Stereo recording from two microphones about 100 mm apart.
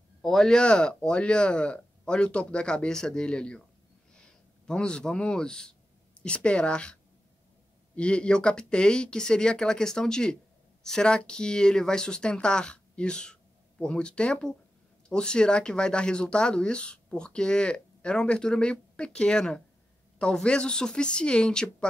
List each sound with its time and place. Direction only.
0.2 s speech: 5° left (ahead or behind)